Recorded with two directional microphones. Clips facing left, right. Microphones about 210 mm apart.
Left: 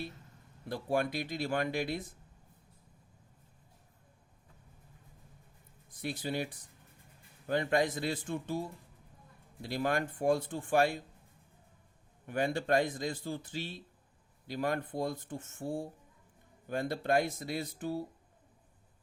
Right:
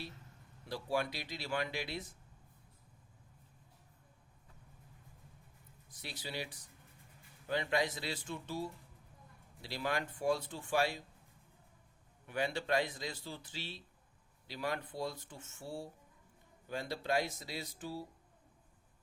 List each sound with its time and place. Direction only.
0.7 s a man's voice: 55° left (ahead or behind)
5.9 s a man's voice: 50° left (ahead or behind)
12.2 s a man's voice: 50° left (ahead or behind)